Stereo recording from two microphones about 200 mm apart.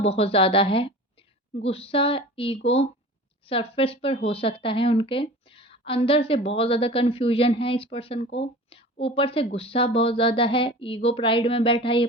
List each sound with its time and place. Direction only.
0.0 s speech: 30° left (ahead or behind)